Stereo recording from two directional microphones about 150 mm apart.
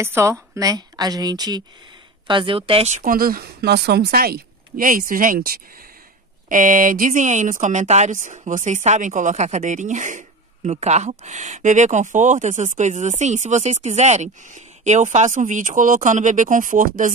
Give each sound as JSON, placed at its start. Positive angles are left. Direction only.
{"t": 0.0, "sound": "a woman's voice", "side_deg": -20}
{"t": 3.0, "sound": "a woman's voice", "side_deg": -70}